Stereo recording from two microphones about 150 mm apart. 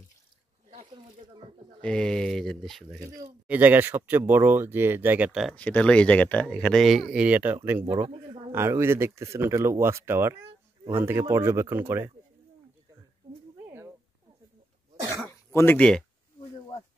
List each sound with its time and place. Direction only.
0.9 s speech: 30° right (ahead or behind)
1.8 s speech: 5° left (ahead or behind)
3.0 s speech: 25° right (ahead or behind)
3.4 s speech: 10° right (ahead or behind)
5.6 s speech: 10° left (ahead or behind); by 7.9 s 15° right (ahead or behind)
8.1 s speech: 35° right (ahead or behind)
8.5 s speech: 15° right (ahead or behind)
13.7 s a sound: 15° right (ahead or behind)
15.2 s throat clearing: 15° left (ahead or behind)